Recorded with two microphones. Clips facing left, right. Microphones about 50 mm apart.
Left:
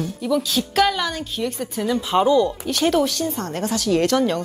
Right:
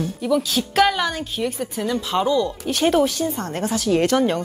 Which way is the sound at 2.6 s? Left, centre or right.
Centre.